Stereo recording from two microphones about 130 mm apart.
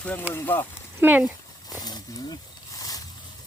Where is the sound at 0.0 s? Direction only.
10° left (ahead or behind).